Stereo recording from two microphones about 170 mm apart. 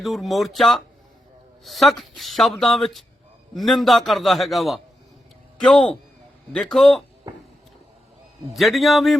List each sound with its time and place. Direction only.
0.0 s speech: centre (ahead or behind)
7.3 s a sound: 20° right (ahead or behind)
8.5 s speech: centre (ahead or behind)